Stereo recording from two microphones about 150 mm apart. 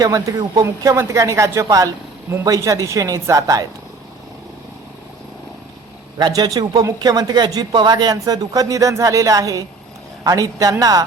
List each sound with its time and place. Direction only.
0.0 s speech: 25° right (ahead or behind)
6.1 s speech: 25° right (ahead or behind)